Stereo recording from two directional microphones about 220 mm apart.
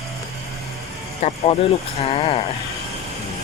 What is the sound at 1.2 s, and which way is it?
Speech, 30° left (ahead or behind).